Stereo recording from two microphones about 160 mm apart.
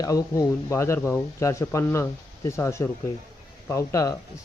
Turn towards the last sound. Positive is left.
turn(degrees=20)  # may be behind; listen again after turning